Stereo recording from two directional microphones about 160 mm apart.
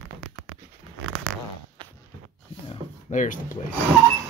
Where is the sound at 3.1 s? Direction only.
55° left (ahead or behind).